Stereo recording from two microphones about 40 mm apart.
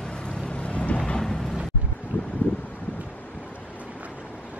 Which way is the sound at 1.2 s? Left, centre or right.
Centre.